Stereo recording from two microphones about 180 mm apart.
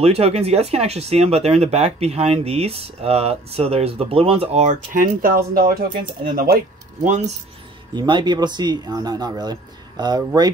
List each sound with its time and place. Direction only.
0.0 s speech: 35° right (ahead or behind)
7.9 s speech: 25° right (ahead or behind)